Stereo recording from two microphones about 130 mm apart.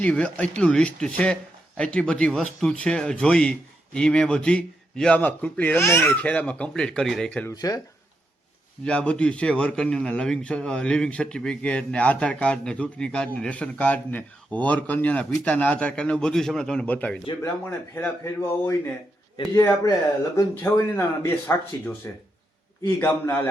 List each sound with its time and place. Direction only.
0.0 s a man's voice: 10° left (ahead or behind)
7.5 s speech: 30° left (ahead or behind)
8.8 s a man's voice: 10° left (ahead or behind)
19.5 s a man's voice: 25° left (ahead or behind)